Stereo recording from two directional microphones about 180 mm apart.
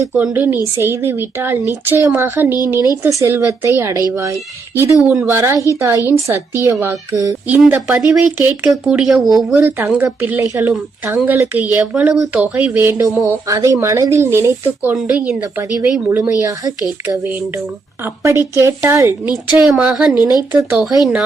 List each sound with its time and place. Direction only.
0.0 s speech: 10° right (ahead or behind)
2.7 s speech: 20° left (ahead or behind)
3.0 s speech: 15° right (ahead or behind)
18.0 s a woman's voice: 15° right (ahead or behind)